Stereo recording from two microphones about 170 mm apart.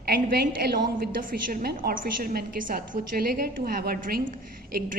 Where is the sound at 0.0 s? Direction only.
65° right (ahead or behind).